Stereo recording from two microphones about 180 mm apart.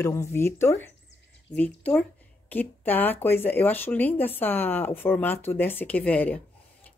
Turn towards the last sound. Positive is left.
turn(degrees=10)  # may be behind; listen again after turning